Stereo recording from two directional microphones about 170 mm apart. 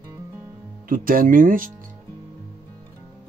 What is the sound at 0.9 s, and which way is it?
Speech, 55° right (ahead or behind).